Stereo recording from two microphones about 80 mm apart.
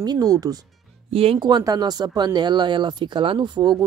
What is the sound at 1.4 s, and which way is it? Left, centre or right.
Speech, right.